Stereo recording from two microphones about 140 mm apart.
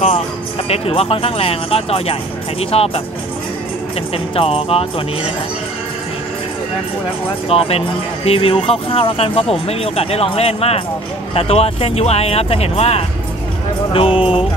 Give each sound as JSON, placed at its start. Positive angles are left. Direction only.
{"t": 0.7, "sound": "speech", "side_deg": 45}
{"t": 4.4, "sound": "speech", "side_deg": 45}
{"t": 7.4, "sound": "speech", "side_deg": 45}